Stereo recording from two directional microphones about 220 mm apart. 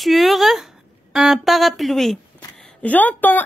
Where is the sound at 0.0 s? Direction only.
Centre (ahead or behind).